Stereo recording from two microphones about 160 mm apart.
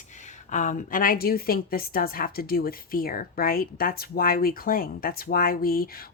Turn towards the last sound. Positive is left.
turn(degrees=65)  # may be behind; listen again after turning